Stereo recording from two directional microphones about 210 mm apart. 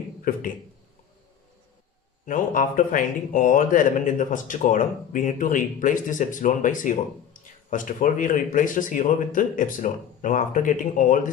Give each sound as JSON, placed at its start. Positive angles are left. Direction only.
{"t": 0.3, "sound": "speech", "side_deg": 40}
{"t": 2.2, "sound": "speech", "side_deg": 40}